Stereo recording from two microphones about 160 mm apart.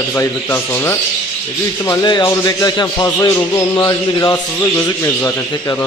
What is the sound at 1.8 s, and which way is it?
A man's voice, 25° left (ahead or behind).